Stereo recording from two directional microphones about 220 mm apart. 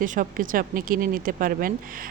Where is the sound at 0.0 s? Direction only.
35° right (ahead or behind).